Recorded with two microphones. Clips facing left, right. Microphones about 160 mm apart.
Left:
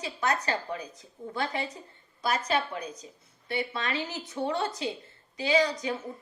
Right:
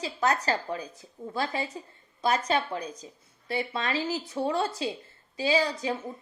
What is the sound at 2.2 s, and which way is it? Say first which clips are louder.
A woman's voice: right 2 dB; 30° right (ahead or behind).